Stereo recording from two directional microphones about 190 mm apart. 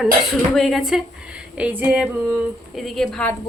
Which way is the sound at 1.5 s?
10° right (ahead or behind).